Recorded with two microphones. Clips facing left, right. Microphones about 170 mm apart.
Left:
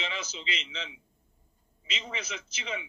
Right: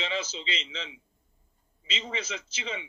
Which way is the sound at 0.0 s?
30° right (ahead or behind).